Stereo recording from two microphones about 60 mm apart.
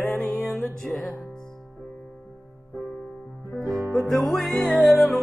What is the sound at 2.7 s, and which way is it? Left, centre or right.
Music, centre.